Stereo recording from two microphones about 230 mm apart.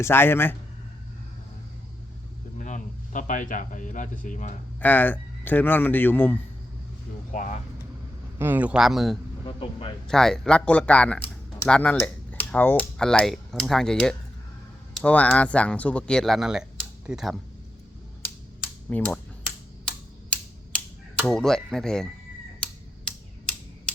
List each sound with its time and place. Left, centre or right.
0.0 s a man's voice: centre
2.6 s speech: left
4.8 s a man's voice: centre
7.3 s speech: left
8.4 s speech: centre
9.5 s speech: left
10.1 s speech: centre
18.9 s speech: centre
20.3 s a sound: centre
22.6 s typewriter: centre